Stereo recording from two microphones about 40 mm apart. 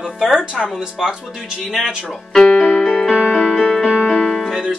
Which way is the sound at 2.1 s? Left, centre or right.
Centre.